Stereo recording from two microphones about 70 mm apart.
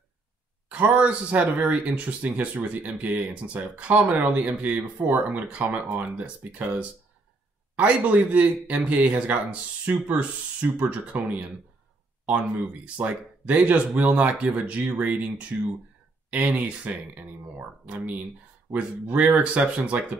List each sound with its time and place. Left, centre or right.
0.7 s speech: centre
12.8 s speech: centre